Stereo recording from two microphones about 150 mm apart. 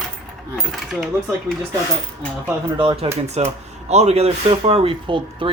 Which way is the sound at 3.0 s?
45° right (ahead or behind).